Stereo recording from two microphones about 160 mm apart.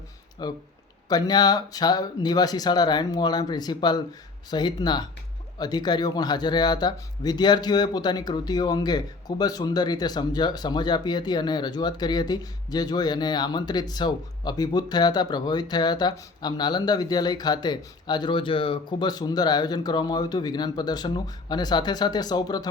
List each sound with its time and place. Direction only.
0.4 s speech: 25° left (ahead or behind)